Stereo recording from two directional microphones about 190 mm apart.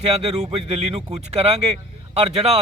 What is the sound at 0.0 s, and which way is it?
Speech, 35° right (ahead or behind).